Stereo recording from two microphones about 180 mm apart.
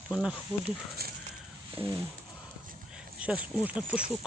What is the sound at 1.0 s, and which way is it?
Speech, 60° right (ahead or behind).